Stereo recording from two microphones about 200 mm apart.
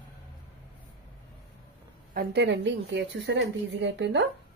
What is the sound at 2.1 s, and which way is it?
A woman's voice, 60° right (ahead or behind).